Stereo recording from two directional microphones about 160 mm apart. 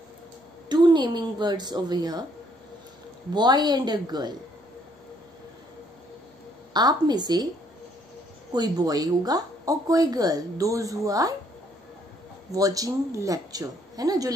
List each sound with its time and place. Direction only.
0.7 s speech: 25° right (ahead or behind)
3.3 s speech: 25° right (ahead or behind)
6.7 s speech: 25° right (ahead or behind)
8.5 s speech: 25° right (ahead or behind)
12.5 s speech: 20° right (ahead or behind)